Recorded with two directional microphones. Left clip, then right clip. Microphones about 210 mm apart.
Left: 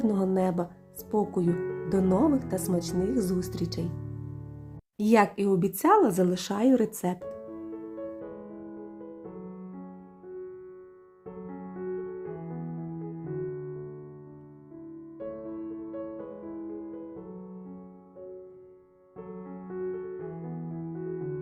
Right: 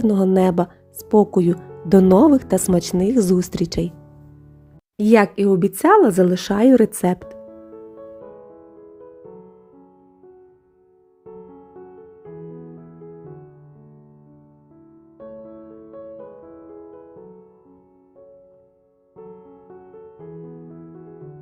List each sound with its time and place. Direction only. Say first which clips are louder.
0.0 s speech: right 10 dB; 35° right (ahead or behind)
4.9 s speech: right 8 dB; 25° right (ahead or behind)